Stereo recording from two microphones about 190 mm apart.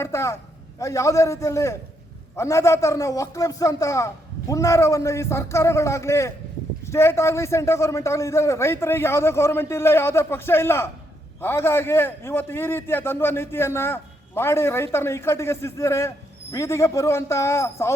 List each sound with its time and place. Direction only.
0.0 s a man's voice: 15° left (ahead or behind)